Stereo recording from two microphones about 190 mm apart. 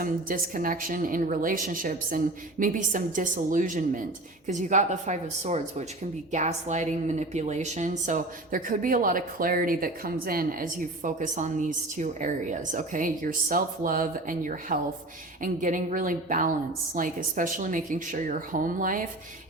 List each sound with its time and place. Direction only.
0.0 s a woman's voice: 45° right (ahead or behind)